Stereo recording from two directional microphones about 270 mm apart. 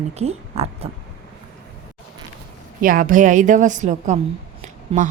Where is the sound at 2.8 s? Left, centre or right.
Right.